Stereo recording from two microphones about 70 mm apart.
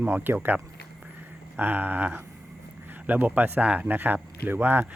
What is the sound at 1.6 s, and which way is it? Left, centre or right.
Speech, right.